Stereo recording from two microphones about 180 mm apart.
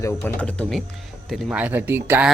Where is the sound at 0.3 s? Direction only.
5° left (ahead or behind).